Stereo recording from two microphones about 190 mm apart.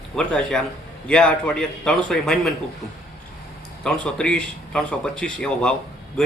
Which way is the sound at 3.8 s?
5° left (ahead or behind).